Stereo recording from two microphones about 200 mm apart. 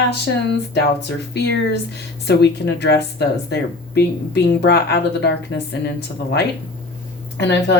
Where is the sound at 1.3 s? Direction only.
55° left (ahead or behind).